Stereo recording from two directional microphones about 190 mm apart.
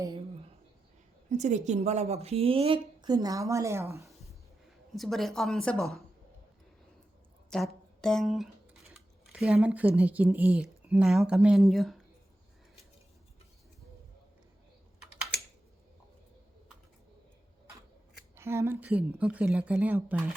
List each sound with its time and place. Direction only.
1.3 s a woman's voice: 40° right (ahead or behind); by 4.1 s 15° right (ahead or behind)
4.2 s a sound: centre (ahead or behind)
7.5 s speech: 5° left (ahead or behind)
18.3 s a woman's voice: 15° right (ahead or behind)